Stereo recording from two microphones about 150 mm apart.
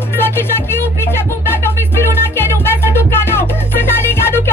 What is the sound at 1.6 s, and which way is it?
Music, 15° left (ahead or behind).